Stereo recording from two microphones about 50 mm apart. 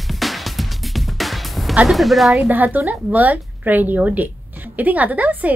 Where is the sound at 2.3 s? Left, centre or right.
Right.